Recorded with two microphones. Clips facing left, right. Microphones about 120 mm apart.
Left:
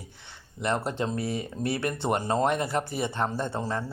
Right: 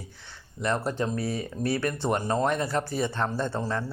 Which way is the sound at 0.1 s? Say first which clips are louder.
Right 1 dB; 20° left (ahead or behind).